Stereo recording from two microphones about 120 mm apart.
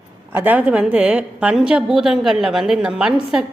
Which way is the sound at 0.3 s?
15° right (ahead or behind).